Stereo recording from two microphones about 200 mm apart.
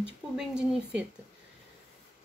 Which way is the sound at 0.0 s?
5° right (ahead or behind).